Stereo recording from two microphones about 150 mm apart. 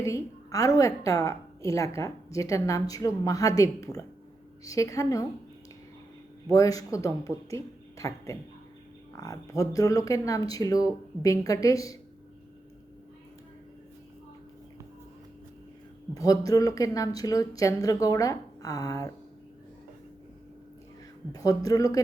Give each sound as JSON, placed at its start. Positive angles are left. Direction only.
{"t": 0.0, "sound": "a woman's voice", "side_deg": 20}
{"t": 6.5, "sound": "a woman's voice", "side_deg": 25}
{"t": 16.1, "sound": "a woman's voice", "side_deg": 25}
{"t": 21.3, "sound": "a woman's voice", "side_deg": 25}